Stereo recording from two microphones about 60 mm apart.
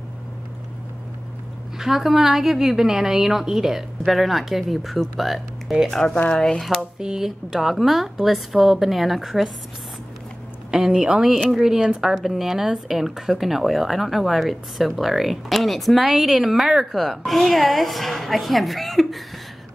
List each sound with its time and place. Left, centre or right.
1.8 s speech: centre
5.9 s speech: centre
6.1 s speech: left
6.4 s speech: centre
6.8 s speech: centre
10.7 s speech: centre